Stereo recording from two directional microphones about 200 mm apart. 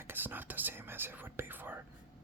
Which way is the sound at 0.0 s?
10° right (ahead or behind).